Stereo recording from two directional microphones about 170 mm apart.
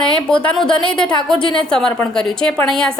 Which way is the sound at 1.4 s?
30° left (ahead or behind).